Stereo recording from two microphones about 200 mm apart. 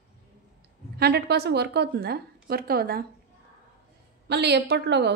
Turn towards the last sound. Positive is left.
turn(degrees=-55)  # may be behind; listen again after turning